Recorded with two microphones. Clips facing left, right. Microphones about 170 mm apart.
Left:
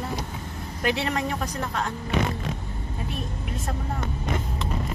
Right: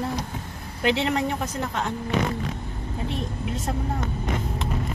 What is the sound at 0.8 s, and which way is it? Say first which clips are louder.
Speech: right 3 dB; 25° right (ahead or behind).